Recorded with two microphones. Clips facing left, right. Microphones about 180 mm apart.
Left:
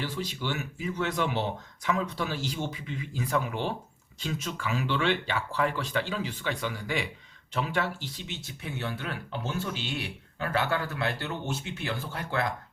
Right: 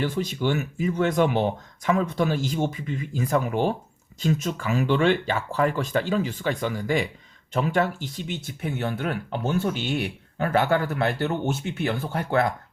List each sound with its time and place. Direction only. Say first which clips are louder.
0.0 s speech: right 8 dB; 50° right (ahead or behind)